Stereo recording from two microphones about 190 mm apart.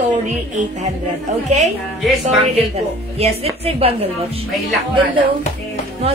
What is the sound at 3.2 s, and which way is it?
A woman's voice, 30° right (ahead or behind).